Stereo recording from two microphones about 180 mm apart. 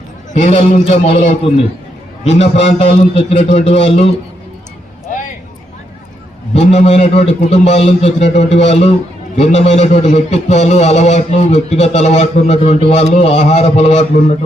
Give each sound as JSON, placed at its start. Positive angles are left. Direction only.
{"t": 0.3, "sound": "a man's voice", "side_deg": 40}
{"t": 6.5, "sound": "a man's voice", "side_deg": 35}